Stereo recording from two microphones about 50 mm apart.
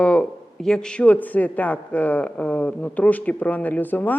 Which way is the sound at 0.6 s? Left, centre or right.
Centre.